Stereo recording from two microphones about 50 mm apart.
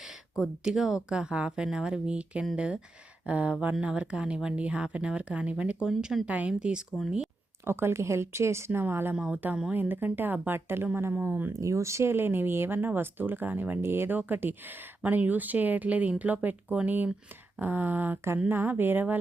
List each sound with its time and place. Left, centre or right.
0.0 s speech: centre
1.1 s speech: right
6.5 s speech: centre
7.6 s speech: right
8.8 s speech: right
9.3 s speech: right
11.6 s speech: right
12.1 s speech: right
13.8 s speech: right
14.2 s speech: right